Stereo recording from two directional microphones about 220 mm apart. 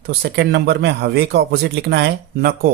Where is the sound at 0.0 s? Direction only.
45° right (ahead or behind).